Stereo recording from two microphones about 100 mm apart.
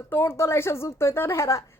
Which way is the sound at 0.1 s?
20° left (ahead or behind).